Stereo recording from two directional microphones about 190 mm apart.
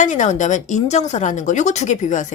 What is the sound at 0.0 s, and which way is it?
Speech, 40° left (ahead or behind).